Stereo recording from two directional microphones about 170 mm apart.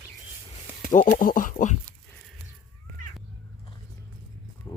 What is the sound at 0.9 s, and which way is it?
Speech, 50° left (ahead or behind).